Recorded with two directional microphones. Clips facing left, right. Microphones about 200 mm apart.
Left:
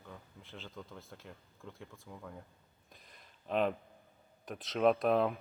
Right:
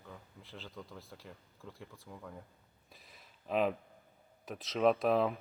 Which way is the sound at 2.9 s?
5° right (ahead or behind).